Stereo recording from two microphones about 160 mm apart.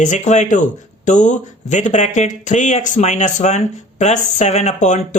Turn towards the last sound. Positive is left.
turn(degrees=50)  # may be behind; listen again after turning